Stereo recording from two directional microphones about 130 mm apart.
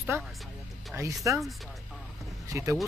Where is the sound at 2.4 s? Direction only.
25° right (ahead or behind).